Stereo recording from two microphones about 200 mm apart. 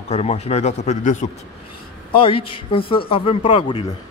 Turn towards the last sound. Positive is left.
turn(degrees=25)  # may be behind; listen again after turning